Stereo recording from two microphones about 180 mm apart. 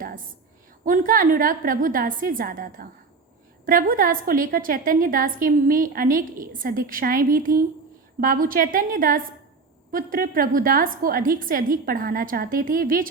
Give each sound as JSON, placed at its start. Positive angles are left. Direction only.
{"t": 0.9, "sound": "a woman's voice", "side_deg": -50}